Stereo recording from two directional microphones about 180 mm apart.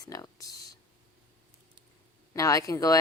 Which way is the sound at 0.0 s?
20° left (ahead or behind).